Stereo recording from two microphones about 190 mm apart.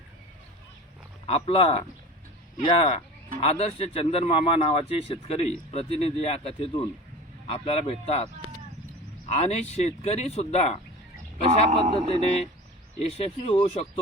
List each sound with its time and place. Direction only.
1.3 s speech: 30° left (ahead or behind)
9.3 s speech: 35° left (ahead or behind)
11.7 s a man's voice: 30° right (ahead or behind)
13.0 s speech: 35° left (ahead or behind)